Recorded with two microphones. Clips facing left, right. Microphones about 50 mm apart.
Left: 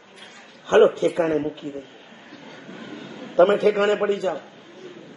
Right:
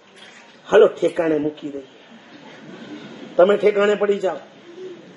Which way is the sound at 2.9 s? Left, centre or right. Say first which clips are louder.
Right 1 dB; left.